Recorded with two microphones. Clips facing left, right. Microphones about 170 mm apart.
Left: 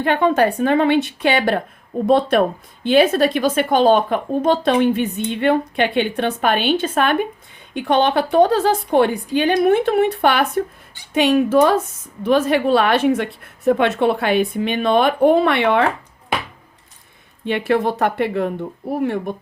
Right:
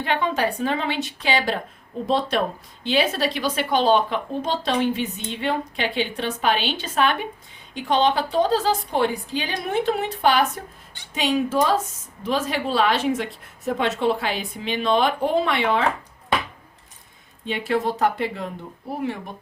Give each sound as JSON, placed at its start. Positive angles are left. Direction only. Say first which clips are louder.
{"t": 0.0, "sound": "a woman's voice", "louder": "left 7 dB", "side_deg": 50}
{"t": 17.4, "sound": "a woman's voice", "louder": "left 5 dB", "side_deg": 60}